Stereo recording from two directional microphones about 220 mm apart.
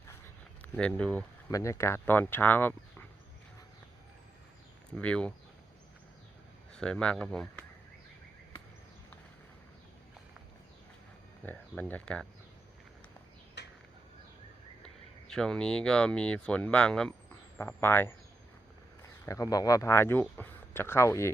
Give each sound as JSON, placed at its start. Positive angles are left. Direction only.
{"t": 0.6, "sound": "speech", "side_deg": 5}
{"t": 4.9, "sound": "speech", "side_deg": 5}
{"t": 6.7, "sound": "speech", "side_deg": 5}
{"t": 11.4, "sound": "speech", "side_deg": 5}
{"t": 13.6, "sound": "a sound", "side_deg": 50}
{"t": 15.3, "sound": "speech", "side_deg": 5}
{"t": 19.2, "sound": "speech", "side_deg": 15}